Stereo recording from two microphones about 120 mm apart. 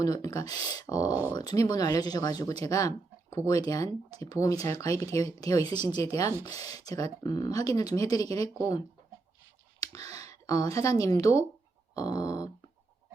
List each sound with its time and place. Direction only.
0.0 s speech: 30° left (ahead or behind)
9.8 s clicking: 30° left (ahead or behind)
10.2 s speech: 30° left (ahead or behind)